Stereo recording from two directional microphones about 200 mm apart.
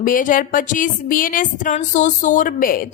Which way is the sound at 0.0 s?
40° left (ahead or behind).